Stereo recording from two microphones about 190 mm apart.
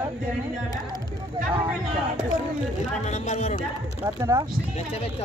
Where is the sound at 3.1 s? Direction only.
40° left (ahead or behind).